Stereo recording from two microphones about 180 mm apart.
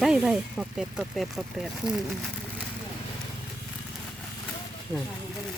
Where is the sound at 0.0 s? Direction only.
5° right (ahead or behind).